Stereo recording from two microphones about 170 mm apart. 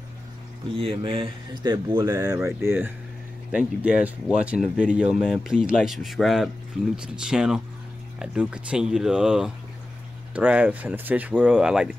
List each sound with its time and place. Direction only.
0.7 s speech: 35° right (ahead or behind); by 11.9 s 5° right (ahead or behind)